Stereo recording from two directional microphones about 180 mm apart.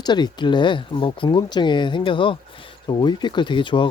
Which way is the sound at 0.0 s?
25° left (ahead or behind).